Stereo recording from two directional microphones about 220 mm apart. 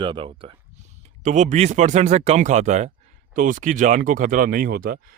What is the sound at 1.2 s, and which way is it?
Speech, 35° right (ahead or behind).